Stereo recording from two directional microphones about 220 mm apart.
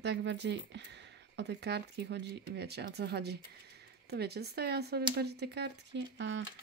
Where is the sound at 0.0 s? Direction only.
50° right (ahead or behind).